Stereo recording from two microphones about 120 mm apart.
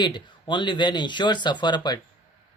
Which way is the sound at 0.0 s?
40° left (ahead or behind).